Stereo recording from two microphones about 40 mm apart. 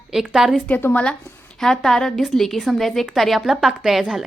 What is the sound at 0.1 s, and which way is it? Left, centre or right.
Speech, centre.